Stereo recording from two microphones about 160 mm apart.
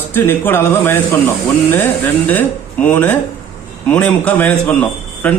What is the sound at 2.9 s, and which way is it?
A man's voice, 10° left (ahead or behind).